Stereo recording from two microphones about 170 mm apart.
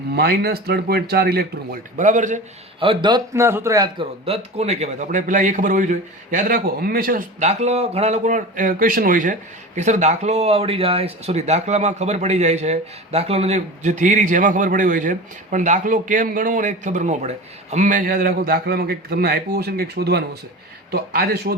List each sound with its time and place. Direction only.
0.1 s speech: 65° right (ahead or behind)
2.0 s a man's voice: 45° right (ahead or behind)
2.8 s a man's voice: 30° right (ahead or behind)
4.3 s a man's voice: 40° right (ahead or behind); by 21.5 s 65° right (ahead or behind)